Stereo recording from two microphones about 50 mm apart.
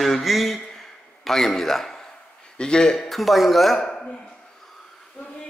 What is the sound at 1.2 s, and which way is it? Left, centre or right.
Speech, centre.